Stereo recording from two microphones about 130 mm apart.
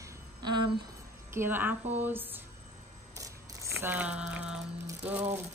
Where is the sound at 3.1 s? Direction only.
20° right (ahead or behind).